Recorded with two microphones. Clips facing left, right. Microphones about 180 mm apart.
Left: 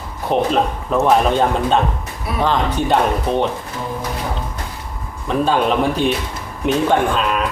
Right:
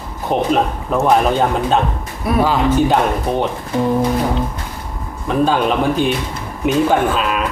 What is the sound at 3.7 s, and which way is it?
Music, 65° right (ahead or behind).